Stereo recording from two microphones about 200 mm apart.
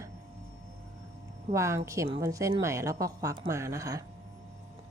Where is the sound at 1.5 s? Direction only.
15° right (ahead or behind).